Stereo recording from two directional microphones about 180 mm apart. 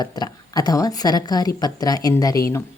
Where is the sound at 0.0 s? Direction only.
20° left (ahead or behind).